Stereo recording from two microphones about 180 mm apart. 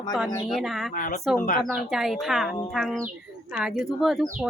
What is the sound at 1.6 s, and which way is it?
Speech, centre (ahead or behind).